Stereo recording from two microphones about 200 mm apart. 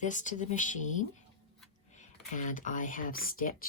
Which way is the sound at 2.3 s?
40° left (ahead or behind).